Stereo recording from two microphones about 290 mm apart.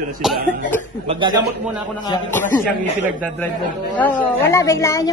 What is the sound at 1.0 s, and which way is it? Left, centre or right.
Speech, centre.